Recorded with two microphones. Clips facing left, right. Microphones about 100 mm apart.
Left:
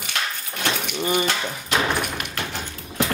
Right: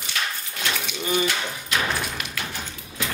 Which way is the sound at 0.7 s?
55° left (ahead or behind).